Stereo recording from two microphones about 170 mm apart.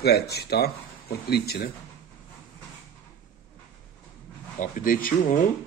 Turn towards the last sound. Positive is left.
turn(degrees=55)  # may be behind; listen again after turning